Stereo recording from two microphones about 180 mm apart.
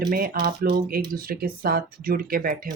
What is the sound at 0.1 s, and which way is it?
Speech, 55° right (ahead or behind).